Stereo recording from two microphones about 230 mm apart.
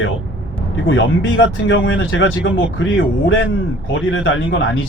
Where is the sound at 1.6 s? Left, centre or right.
Left.